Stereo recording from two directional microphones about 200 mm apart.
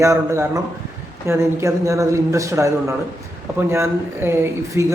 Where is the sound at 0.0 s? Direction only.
15° right (ahead or behind).